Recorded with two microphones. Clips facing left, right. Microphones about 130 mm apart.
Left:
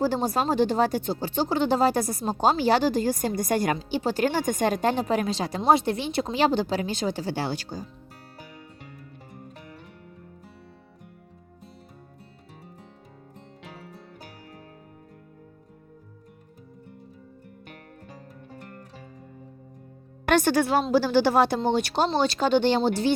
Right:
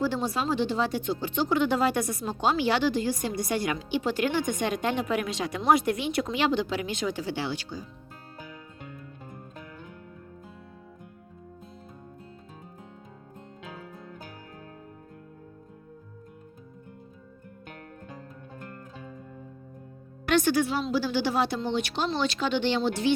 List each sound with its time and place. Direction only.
0.0 s speech: 40° left (ahead or behind)
20.2 s a woman's voice: 45° left (ahead or behind)
20.8 s speech: 40° left (ahead or behind)